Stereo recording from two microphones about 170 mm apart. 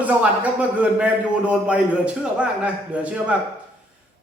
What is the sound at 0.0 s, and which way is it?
A man's voice, 10° right (ahead or behind).